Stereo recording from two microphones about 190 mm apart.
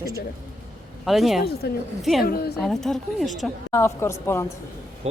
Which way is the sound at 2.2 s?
55° left (ahead or behind).